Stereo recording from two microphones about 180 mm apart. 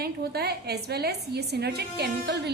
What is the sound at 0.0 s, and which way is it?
A woman's voice, 60° right (ahead or behind).